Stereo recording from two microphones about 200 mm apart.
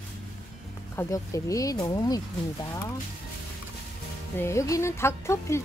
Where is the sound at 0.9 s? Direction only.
15° left (ahead or behind).